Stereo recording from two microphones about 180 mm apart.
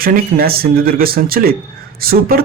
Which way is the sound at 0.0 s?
55° right (ahead or behind).